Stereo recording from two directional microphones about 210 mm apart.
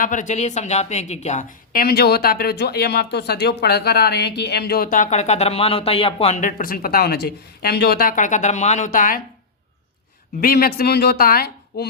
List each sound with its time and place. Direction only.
0.0 s a woman's voice: 35° left (ahead or behind)
10.4 s a woman's voice: 45° left (ahead or behind)